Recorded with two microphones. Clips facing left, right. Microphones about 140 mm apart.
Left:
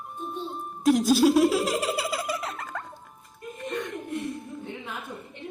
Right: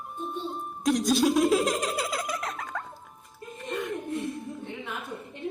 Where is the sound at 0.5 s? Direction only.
Centre (ahead or behind).